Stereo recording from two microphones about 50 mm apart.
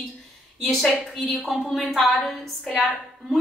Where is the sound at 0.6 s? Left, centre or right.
Centre.